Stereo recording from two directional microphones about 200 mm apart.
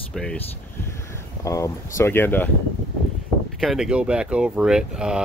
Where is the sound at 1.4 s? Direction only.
15° left (ahead or behind).